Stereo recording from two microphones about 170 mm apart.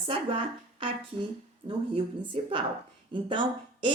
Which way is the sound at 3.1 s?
30° right (ahead or behind).